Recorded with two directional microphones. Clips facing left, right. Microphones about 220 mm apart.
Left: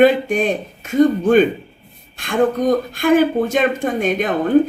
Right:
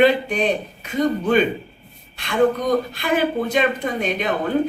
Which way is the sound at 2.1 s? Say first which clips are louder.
Left 1 dB; 50° left (ahead or behind).